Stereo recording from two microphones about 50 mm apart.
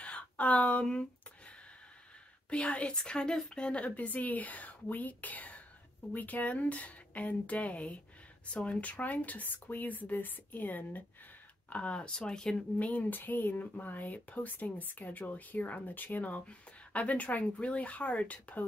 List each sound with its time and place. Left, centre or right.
0.0 s a sound: left
2.5 s a woman's voice: left
11.7 s speech: left
12.7 s speech: left